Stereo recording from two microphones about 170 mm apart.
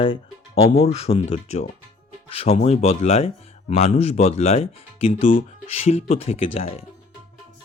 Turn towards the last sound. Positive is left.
turn(degrees=35)  # may be behind; listen again after turning